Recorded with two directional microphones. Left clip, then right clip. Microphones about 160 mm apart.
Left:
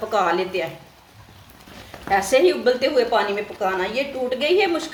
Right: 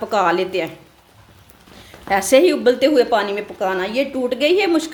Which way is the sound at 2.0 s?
70° right (ahead or behind).